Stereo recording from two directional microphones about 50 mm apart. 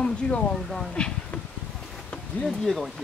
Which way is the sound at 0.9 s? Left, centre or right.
Left.